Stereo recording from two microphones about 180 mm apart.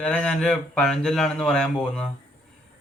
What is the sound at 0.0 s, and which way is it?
Speech, 5° left (ahead or behind).